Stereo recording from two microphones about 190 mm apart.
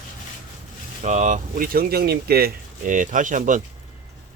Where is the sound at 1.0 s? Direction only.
40° right (ahead or behind).